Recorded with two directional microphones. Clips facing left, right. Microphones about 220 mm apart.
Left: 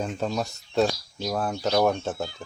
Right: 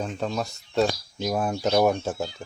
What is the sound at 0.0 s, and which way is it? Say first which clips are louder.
Speech: left 1 dB; centre (ahead or behind).